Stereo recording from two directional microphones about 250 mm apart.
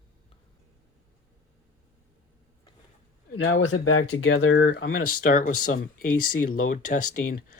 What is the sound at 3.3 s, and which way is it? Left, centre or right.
Speech, left.